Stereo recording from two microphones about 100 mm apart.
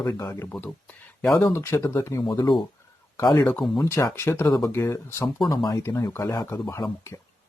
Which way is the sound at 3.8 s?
30° left (ahead or behind).